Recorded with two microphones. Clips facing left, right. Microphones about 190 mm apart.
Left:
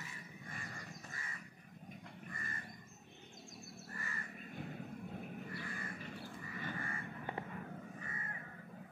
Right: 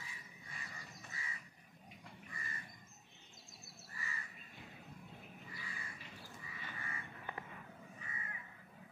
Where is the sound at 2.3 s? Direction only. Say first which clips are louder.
Left 3 dB; 50° left (ahead or behind).